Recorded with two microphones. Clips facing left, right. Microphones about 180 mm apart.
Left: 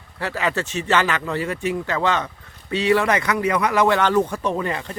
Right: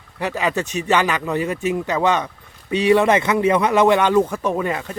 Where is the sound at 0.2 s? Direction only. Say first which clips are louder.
Right 2 dB; 15° right (ahead or behind).